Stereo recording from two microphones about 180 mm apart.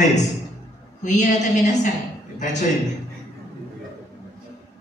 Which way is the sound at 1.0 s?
40° left (ahead or behind).